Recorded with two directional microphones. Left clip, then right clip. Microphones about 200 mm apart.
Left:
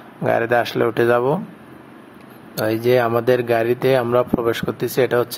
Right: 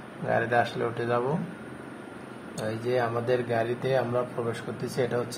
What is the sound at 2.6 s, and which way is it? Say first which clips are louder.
Speech: left 11 dB; 45° left (ahead or behind).